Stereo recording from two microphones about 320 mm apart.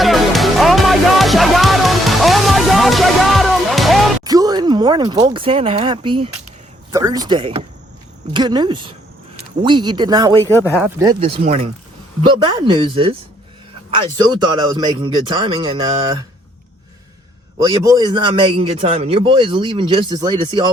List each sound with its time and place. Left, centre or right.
0.0 s music: centre
4.2 s a man's voice: centre
10.4 s speech: centre
10.8 s a man's voice: centre
17.7 s a man's voice: centre